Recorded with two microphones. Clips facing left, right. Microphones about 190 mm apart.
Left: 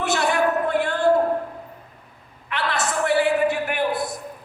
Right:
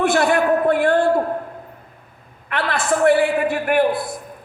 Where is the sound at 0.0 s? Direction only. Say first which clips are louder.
Right 4 dB; 55° right (ahead or behind).